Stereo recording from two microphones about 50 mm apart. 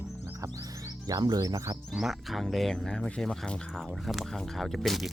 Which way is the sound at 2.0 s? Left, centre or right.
Centre.